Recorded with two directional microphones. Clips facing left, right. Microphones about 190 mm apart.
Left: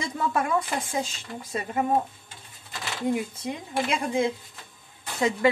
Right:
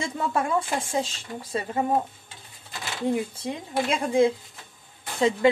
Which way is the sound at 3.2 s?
30° right (ahead or behind).